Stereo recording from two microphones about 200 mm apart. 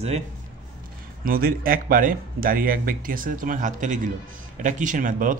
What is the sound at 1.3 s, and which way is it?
A man's voice, 45° right (ahead or behind).